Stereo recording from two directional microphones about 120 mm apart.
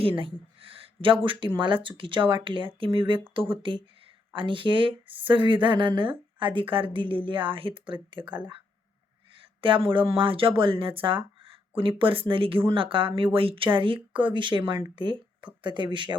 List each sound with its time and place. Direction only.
0.0 s speech: 45° right (ahead or behind)
9.6 s speech: 45° right (ahead or behind)
14.6 s speech: 20° right (ahead or behind)
14.9 s speech: 40° right (ahead or behind)